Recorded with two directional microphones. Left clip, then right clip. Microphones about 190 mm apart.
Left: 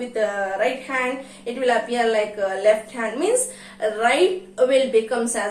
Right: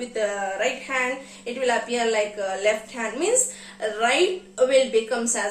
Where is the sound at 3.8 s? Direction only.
25° right (ahead or behind).